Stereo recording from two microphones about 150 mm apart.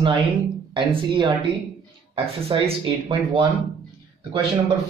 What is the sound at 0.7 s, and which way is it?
A man's voice, 30° right (ahead or behind).